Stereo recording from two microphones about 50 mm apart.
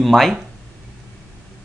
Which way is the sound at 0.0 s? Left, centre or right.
Centre.